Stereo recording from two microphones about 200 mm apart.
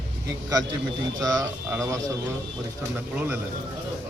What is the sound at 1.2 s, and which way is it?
Speech, 15° right (ahead or behind).